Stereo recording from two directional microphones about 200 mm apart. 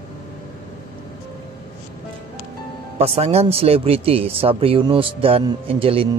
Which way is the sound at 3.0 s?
30° right (ahead or behind).